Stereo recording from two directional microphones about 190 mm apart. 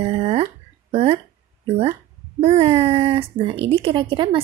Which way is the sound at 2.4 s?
30° right (ahead or behind).